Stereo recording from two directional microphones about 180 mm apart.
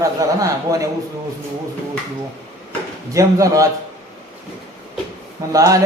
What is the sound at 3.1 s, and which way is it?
Speech, 20° right (ahead or behind).